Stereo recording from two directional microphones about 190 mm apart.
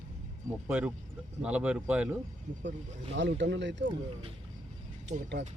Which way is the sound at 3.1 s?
70° right (ahead or behind).